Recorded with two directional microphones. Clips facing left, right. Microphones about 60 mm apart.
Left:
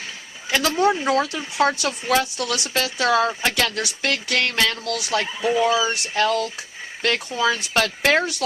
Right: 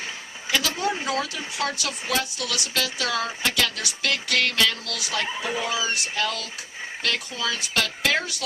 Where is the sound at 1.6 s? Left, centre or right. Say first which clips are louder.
Left 8 dB; left.